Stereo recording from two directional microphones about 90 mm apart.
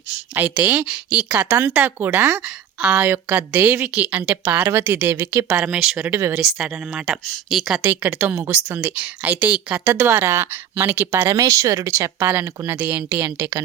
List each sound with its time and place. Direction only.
0.3 s a woman's voice: 15° right (ahead or behind)
2.0 s speech: 30° right (ahead or behind)
2.4 s a woman's voice: 10° right (ahead or behind)
5.1 s a woman's voice: 30° right (ahead or behind)
5.5 s a woman's voice: 10° right (ahead or behind)
6.1 s a woman's voice: 30° right (ahead or behind)
6.4 s speech: centre (ahead or behind)
7.8 s a woman's voice: 20° right (ahead or behind)
8.7 s a woman's voice: 15° right (ahead or behind); by 12.7 s 30° right (ahead or behind)
12.7 s a woman's voice: 15° right (ahead or behind)